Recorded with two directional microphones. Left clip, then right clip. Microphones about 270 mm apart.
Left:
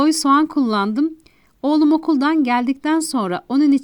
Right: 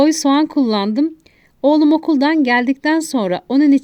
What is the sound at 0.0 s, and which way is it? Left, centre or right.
A woman's voice, centre.